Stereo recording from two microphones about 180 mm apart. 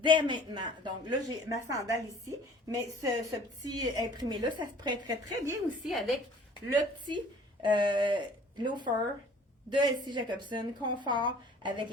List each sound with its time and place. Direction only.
0.0 s a woman's voice: 25° right (ahead or behind)
5.8 s a woman's voice: centre (ahead or behind)
7.6 s a woman's voice: 25° right (ahead or behind)